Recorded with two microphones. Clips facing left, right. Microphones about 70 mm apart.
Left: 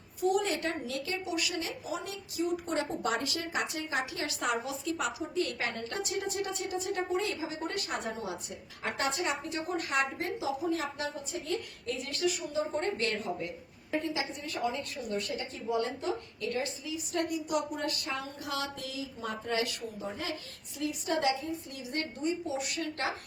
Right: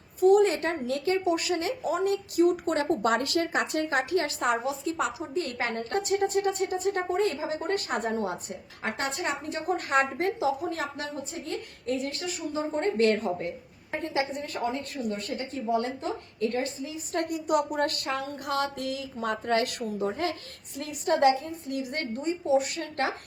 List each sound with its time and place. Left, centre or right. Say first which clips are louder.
0.2 s a woman's voice: right 9 dB; right